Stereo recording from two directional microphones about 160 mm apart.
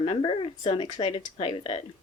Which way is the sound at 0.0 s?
35° left (ahead or behind).